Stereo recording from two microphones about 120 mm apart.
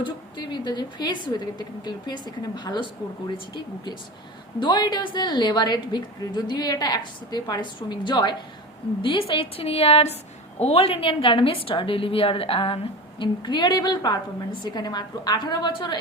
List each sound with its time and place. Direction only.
0.0 s a woman's voice: 40° left (ahead or behind)